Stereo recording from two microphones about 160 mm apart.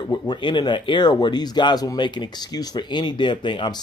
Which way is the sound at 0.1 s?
30° left (ahead or behind).